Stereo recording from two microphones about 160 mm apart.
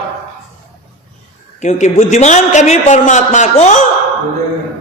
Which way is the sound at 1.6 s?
45° left (ahead or behind).